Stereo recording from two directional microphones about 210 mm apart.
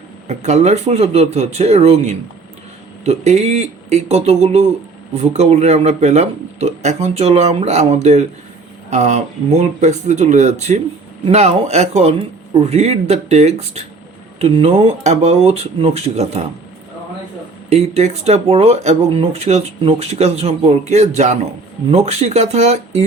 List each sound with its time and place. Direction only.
0.3 s speech: 30° right (ahead or behind)
17.7 s speech: 30° right (ahead or behind)